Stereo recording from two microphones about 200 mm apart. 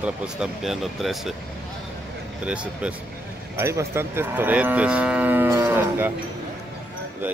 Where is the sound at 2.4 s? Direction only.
5° right (ahead or behind).